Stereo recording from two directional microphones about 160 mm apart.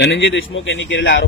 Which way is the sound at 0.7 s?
90° left.